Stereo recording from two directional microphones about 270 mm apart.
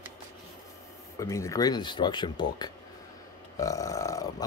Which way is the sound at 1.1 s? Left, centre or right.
Centre.